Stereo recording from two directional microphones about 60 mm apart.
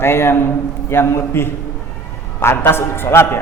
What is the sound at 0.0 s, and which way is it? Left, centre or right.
A man's voice, left.